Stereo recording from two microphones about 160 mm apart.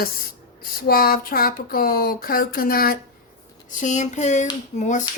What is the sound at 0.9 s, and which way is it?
Speech, 65° left (ahead or behind).